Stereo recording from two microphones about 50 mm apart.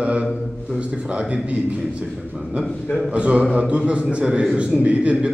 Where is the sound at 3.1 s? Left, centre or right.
Right.